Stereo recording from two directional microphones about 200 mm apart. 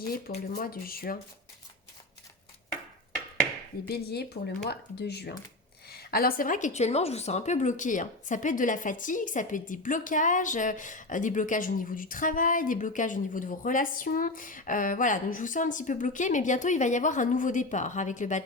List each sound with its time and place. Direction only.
0.3 s speech: 50° left (ahead or behind)
3.8 s a woman's voice: 55° left (ahead or behind); by 18.4 s 35° left (ahead or behind)